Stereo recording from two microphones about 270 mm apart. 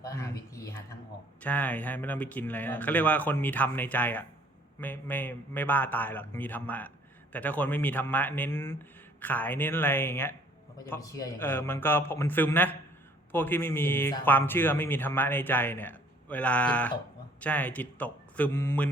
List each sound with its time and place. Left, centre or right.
0.0 s a man's voice: centre